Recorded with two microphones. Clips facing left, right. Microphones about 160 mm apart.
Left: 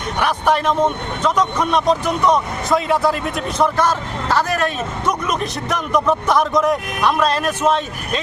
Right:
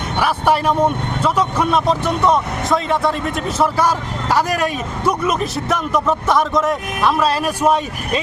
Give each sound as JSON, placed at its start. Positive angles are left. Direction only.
{"t": 0.2, "sound": "speech", "side_deg": -5}